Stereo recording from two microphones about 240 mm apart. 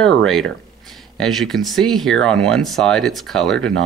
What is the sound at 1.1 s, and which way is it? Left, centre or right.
Speech, centre.